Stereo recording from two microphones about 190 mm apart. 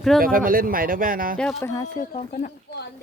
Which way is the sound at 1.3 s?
5° left (ahead or behind).